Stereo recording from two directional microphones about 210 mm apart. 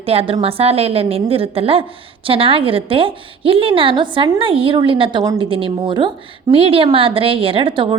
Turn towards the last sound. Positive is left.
turn(degrees=-25)  # may be behind; listen again after turning